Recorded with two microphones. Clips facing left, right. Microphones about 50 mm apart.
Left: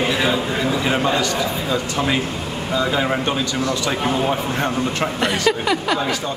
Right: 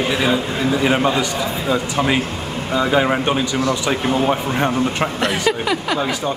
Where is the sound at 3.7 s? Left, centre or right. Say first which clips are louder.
Right 2 dB; centre.